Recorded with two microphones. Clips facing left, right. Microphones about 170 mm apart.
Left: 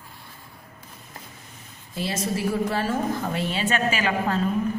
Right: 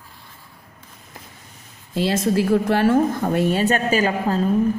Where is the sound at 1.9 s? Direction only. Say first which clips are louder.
Right 8 dB; 75° right (ahead or behind); by 4.4 s 40° right (ahead or behind).